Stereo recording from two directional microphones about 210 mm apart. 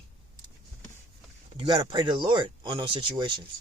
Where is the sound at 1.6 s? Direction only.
20° right (ahead or behind).